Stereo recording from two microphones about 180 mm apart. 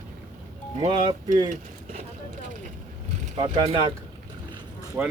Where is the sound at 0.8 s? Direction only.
40° right (ahead or behind).